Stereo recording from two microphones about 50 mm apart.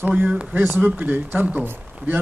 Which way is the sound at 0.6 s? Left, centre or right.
Right.